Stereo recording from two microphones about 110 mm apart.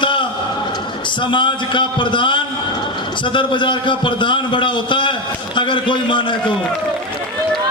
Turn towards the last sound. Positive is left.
turn(degrees=50)  # may be behind; listen again after turning